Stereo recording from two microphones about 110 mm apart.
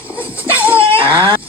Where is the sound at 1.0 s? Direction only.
20° left (ahead or behind).